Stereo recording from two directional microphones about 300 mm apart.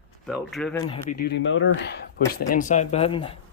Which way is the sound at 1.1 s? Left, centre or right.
Left.